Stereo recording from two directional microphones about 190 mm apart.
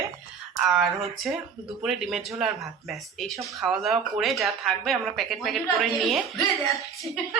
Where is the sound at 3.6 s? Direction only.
Centre (ahead or behind).